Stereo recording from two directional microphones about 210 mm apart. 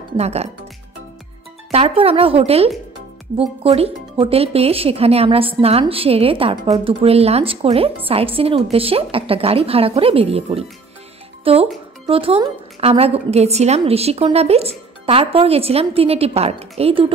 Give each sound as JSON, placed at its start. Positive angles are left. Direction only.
{"t": 0.2, "sound": "speech", "side_deg": -30}
{"t": 1.7, "sound": "speech", "side_deg": -25}